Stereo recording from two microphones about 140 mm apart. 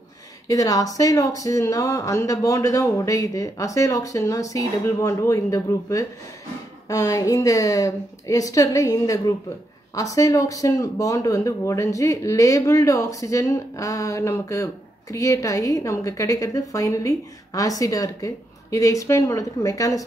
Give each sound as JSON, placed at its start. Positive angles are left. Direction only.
{"t": 0.5, "sound": "speech", "side_deg": 25}